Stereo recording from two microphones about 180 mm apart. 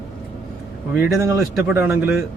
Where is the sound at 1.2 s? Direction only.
15° right (ahead or behind).